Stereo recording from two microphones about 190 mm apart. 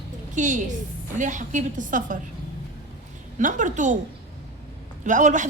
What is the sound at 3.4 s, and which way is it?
Speech, 40° right (ahead or behind).